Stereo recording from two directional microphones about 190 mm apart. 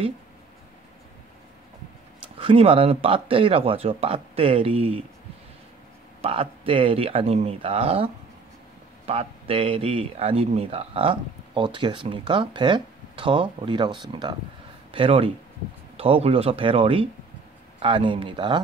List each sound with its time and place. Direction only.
2.3 s speech: 30° right (ahead or behind)
6.2 s speech: 30° right (ahead or behind)